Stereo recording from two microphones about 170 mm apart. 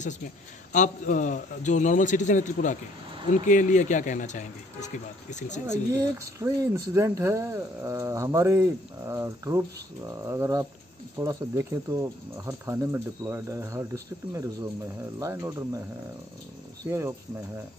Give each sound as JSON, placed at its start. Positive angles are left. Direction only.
{"t": 0.7, "sound": "speech", "side_deg": 50}
{"t": 5.7, "sound": "speech", "side_deg": -20}
{"t": 16.8, "sound": "speech", "side_deg": -15}